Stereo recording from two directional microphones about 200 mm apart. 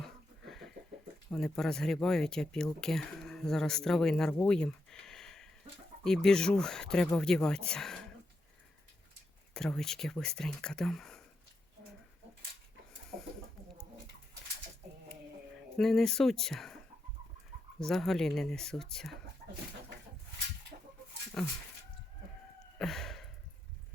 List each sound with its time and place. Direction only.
0.4 s a sound: centre (ahead or behind)
1.3 s speech: 5° left (ahead or behind)
9.6 s speech: 5° left (ahead or behind)
15.8 s speech: centre (ahead or behind)
19.4 s chicken: 50° right (ahead or behind)
21.4 s speech: centre (ahead or behind)
22.8 s gasp: centre (ahead or behind)